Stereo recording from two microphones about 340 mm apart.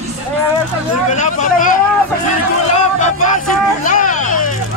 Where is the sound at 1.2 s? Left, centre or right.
Left.